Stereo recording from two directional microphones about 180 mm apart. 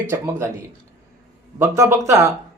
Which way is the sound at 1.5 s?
15° right (ahead or behind).